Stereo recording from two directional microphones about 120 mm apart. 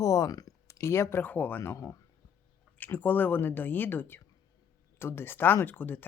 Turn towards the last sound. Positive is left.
turn(degrees=15)  # may be behind; listen again after turning